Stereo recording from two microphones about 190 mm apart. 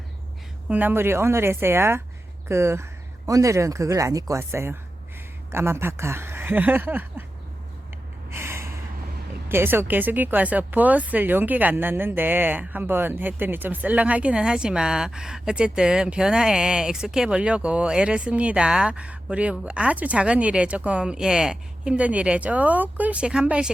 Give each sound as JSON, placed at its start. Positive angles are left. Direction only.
{"t": 0.7, "sound": "speech", "side_deg": -10}
{"t": 8.3, "sound": "gasp", "side_deg": -15}
{"t": 9.5, "sound": "speech", "side_deg": -10}